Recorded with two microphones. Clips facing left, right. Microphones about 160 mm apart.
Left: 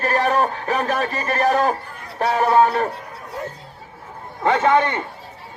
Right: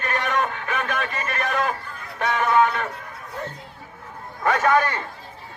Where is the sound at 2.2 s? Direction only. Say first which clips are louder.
Left 4 dB; 35° left (ahead or behind).